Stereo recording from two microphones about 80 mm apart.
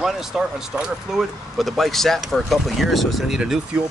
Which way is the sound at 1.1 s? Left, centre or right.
Centre.